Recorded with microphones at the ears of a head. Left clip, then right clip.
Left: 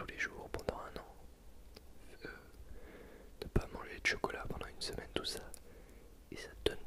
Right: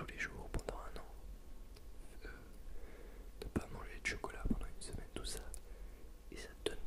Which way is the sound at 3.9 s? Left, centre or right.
Left.